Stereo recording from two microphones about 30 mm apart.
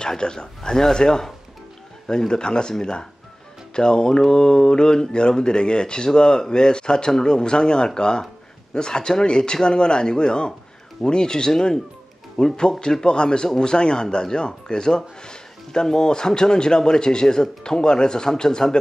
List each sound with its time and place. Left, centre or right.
0.2 s speech: left
0.7 s speech: centre